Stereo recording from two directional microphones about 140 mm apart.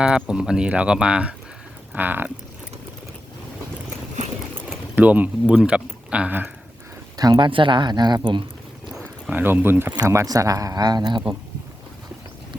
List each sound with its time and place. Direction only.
0.0 s speech: 5° right (ahead or behind)
1.9 s a sound: 15° right (ahead or behind)
4.9 s speech: 10° right (ahead or behind)
7.2 s speech: 30° right (ahead or behind)
9.3 s speech: 15° right (ahead or behind); by 11.2 s 30° right (ahead or behind)